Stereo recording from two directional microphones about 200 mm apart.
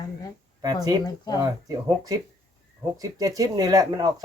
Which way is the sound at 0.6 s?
20° right (ahead or behind).